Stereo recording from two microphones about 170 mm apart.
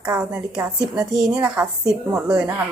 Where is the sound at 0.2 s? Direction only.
5° right (ahead or behind).